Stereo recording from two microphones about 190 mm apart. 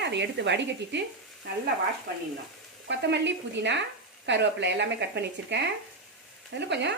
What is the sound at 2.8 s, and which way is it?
Speech, 65° right (ahead or behind).